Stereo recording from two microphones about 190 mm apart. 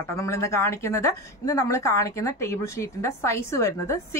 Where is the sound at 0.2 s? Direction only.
15° left (ahead or behind).